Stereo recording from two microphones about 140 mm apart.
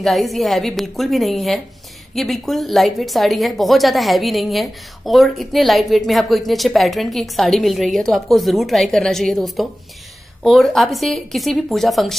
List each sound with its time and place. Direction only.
0.0 s a woman's voice: centre (ahead or behind)